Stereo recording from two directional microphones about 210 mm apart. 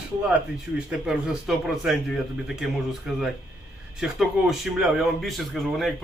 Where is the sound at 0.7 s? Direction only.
5° right (ahead or behind).